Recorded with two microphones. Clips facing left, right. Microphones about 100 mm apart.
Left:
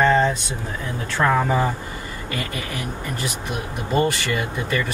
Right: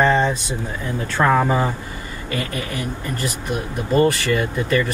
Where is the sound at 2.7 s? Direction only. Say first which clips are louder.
Right 2 dB; centre (ahead or behind).